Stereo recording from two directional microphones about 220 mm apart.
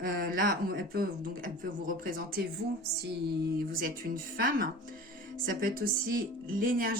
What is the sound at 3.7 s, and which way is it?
Speech, 40° right (ahead or behind).